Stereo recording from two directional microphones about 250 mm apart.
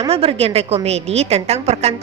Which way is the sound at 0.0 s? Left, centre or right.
Right.